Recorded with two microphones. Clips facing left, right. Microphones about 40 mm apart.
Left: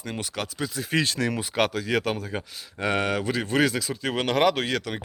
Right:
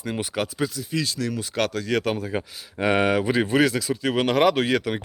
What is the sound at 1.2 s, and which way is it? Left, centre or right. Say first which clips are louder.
Speech: left 1 dB; left.